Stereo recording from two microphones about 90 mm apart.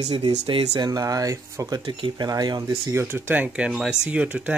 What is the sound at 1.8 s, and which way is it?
Speech, 70° right (ahead or behind).